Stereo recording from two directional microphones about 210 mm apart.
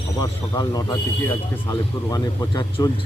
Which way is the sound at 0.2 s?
15° left (ahead or behind).